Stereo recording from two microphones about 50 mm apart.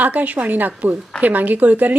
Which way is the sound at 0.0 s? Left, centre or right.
Right.